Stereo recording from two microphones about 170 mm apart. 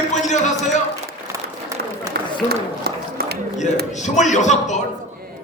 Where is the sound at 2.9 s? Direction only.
65° right (ahead or behind).